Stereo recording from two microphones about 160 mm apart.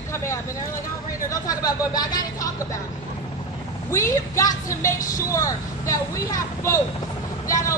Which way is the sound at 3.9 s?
20° left (ahead or behind).